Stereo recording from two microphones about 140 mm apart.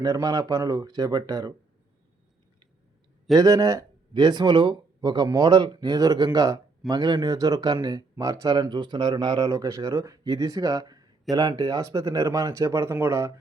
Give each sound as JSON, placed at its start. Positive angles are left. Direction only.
{"t": 0.0, "sound": "speech", "side_deg": -25}
{"t": 3.3, "sound": "speech", "side_deg": -25}